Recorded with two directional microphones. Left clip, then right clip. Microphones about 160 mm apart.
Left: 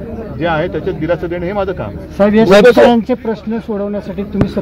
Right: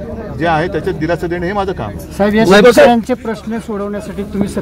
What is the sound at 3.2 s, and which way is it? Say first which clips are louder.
Speech: left 2 dB; 10° left (ahead or behind).